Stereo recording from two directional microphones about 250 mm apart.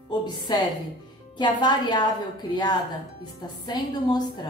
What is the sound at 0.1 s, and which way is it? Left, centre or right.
A woman's voice, centre.